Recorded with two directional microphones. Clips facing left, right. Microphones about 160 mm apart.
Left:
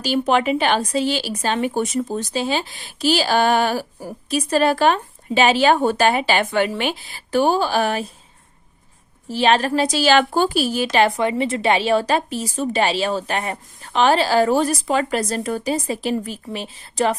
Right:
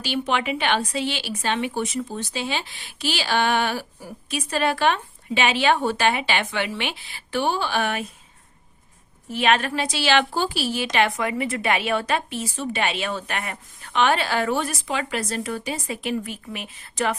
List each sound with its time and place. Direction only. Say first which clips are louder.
0.0 s speech: left 6 dB; 40° left (ahead or behind)
9.3 s speech: left 4 dB; 35° left (ahead or behind)
10.9 s speech: left 5 dB; 30° left (ahead or behind)